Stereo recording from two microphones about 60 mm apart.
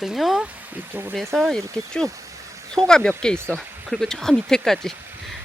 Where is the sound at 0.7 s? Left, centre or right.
Right.